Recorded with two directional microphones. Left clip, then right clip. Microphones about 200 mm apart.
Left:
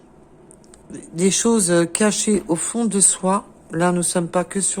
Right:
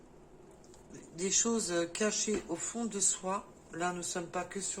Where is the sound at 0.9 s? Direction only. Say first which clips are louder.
Left 16 dB; 60° left (ahead or behind).